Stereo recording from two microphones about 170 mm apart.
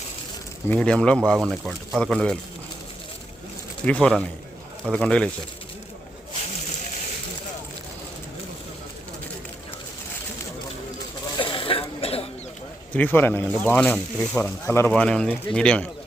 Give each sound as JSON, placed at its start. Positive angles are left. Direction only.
{"t": 0.7, "sound": "speech", "side_deg": 5}
{"t": 3.8, "sound": "speech", "side_deg": 5}
{"t": 11.3, "sound": "throat clearing", "side_deg": 30}
{"t": 12.9, "sound": "speech", "side_deg": 10}